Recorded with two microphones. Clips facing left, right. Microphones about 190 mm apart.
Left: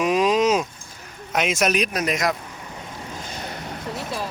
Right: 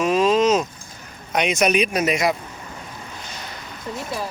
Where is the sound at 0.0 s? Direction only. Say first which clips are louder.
Right 1 dB; 15° left (ahead or behind).